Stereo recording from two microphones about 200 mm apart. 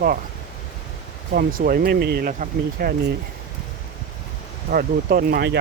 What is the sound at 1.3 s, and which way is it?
Speech, 45° right (ahead or behind).